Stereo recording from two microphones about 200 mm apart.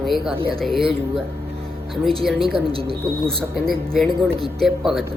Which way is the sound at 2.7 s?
30° right (ahead or behind).